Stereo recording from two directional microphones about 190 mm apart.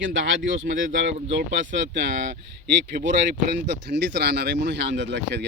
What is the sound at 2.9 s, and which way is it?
Speech, 70° right (ahead or behind).